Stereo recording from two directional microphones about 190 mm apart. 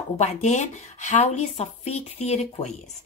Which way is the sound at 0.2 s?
35° left (ahead or behind).